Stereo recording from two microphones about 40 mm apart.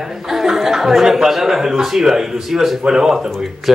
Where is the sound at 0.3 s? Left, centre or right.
Centre.